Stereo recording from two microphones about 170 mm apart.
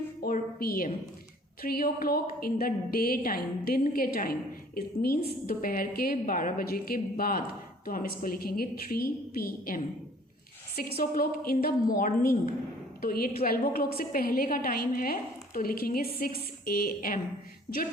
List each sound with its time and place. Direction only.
0.2 s a sound: 60° left (ahead or behind)
1.6 s a woman's voice: 60° left (ahead or behind)
10.9 s a woman's voice: 55° left (ahead or behind)